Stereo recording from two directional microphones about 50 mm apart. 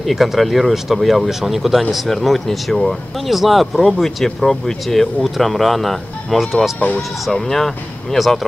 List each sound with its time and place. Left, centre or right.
0.0 s speech: centre
7.3 s speech: centre